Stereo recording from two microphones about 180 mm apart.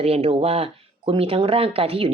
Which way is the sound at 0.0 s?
35° right (ahead or behind).